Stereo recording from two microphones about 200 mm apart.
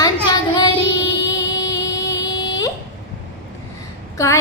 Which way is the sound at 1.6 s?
20° left (ahead or behind).